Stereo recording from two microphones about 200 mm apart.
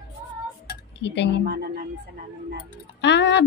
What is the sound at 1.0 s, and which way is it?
Speech, 60° left (ahead or behind).